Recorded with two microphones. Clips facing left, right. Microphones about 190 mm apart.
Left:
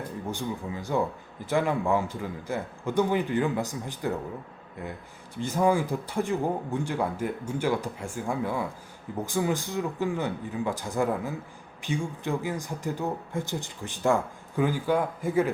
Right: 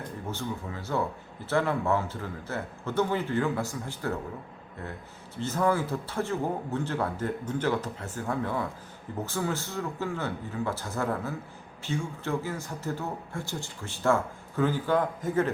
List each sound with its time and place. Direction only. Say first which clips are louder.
0.3 s speech: left 2 dB; 15° left (ahead or behind)
5.4 s speech: left 2 dB; 15° left (ahead or behind)